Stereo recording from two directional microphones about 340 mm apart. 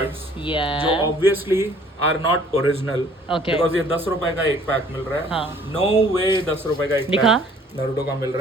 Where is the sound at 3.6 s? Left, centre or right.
Centre.